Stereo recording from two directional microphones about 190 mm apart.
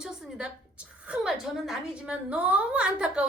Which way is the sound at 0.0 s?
5° right (ahead or behind).